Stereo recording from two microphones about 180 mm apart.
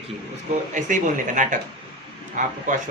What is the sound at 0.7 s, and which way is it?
A man's voice, 45° right (ahead or behind).